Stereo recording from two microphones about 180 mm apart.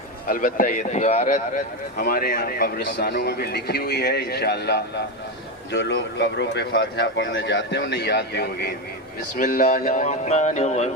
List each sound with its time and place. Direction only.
0.3 s speech: 50° left (ahead or behind)
2.0 s a man's voice: 55° left (ahead or behind)
9.3 s speech: 50° left (ahead or behind)